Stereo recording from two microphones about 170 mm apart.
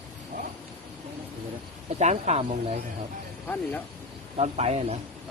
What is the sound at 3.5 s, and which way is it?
Speech, 15° left (ahead or behind).